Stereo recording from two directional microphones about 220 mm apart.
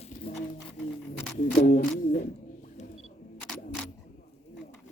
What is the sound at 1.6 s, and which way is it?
Speech, 40° left (ahead or behind).